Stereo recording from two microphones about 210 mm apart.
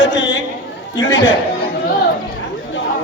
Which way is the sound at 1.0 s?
60° left (ahead or behind).